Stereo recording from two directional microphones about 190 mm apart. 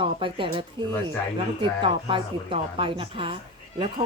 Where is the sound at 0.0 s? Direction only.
25° right (ahead or behind).